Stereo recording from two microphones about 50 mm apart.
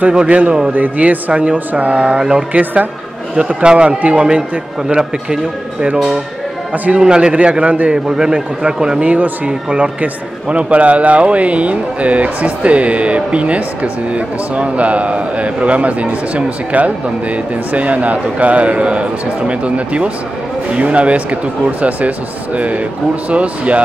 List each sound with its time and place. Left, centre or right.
0.1 s a man's voice: centre
2.1 s speech: centre
2.6 s a man's voice: right
3.4 s speech: centre
9.0 s speech: right